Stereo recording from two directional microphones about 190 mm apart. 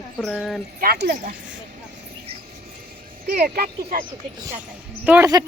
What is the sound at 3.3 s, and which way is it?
Speech, 55° right (ahead or behind).